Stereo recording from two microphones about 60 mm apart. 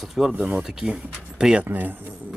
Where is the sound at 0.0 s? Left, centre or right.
Centre.